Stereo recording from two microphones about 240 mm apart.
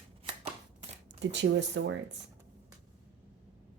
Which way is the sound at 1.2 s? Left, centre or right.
Right.